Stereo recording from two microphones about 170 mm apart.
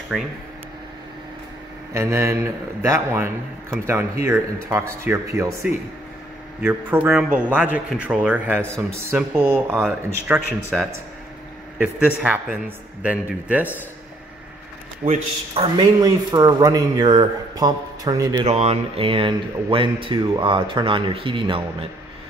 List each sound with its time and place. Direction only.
0.1 s speech: centre (ahead or behind)
2.0 s a man's voice: 15° right (ahead or behind)
6.6 s a man's voice: 10° right (ahead or behind)
12.2 s a man's voice: 10° right (ahead or behind)
15.0 s speech: 35° right (ahead or behind)
18.4 s speech: 40° right (ahead or behind)